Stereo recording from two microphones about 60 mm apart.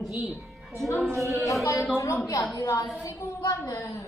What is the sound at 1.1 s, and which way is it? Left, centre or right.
Speech, right.